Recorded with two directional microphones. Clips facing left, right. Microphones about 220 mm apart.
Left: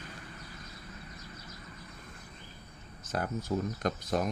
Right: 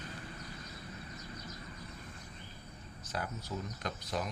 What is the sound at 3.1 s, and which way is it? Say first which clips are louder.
Speech: left 7 dB; 50° left (ahead or behind).